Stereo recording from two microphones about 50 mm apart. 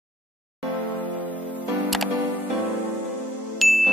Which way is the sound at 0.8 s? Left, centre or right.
Left.